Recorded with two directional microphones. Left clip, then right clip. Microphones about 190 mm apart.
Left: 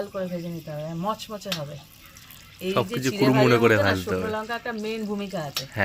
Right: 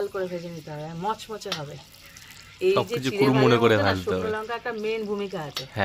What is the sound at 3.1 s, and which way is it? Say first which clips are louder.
Speech: even; 20° right (ahead or behind).